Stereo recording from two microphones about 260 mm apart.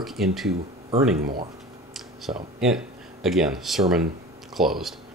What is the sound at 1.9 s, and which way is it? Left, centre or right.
Speech, centre.